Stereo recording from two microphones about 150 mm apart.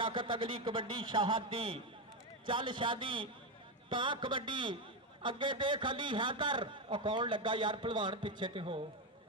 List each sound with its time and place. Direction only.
0.0 s a man's voice: 35° right (ahead or behind)